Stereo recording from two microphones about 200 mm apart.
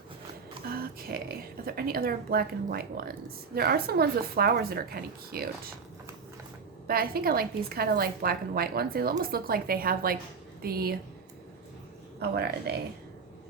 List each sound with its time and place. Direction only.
0.7 s a woman's voice: 50° right (ahead or behind)
6.8 s a woman's voice: 50° right (ahead or behind)
12.2 s a woman's voice: 55° right (ahead or behind)